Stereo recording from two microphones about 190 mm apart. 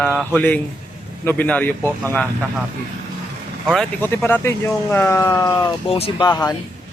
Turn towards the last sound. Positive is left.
turn(degrees=20)  # may be behind; listen again after turning